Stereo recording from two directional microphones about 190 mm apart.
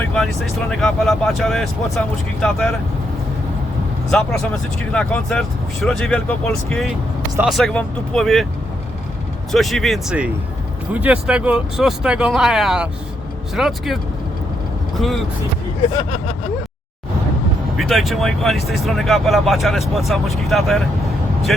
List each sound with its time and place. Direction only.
0.0 s speech: 5° left (ahead or behind)
4.1 s speech: 5° left (ahead or behind)
9.5 s speech: centre (ahead or behind)
16.0 s vehicle: 40° left (ahead or behind)
17.7 s speech: centre (ahead or behind)